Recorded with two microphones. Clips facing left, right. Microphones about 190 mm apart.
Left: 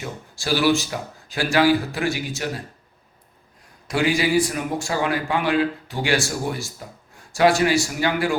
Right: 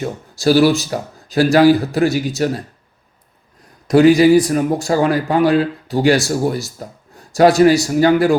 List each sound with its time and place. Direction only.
0.0 s a man's voice: 40° right (ahead or behind)
3.8 s a man's voice: 40° right (ahead or behind)